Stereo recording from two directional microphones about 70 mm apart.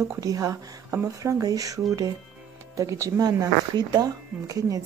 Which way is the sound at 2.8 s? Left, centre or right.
Right.